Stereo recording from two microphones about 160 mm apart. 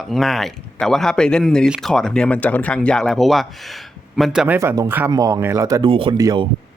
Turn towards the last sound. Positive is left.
turn(degrees=-20)  # may be behind; listen again after turning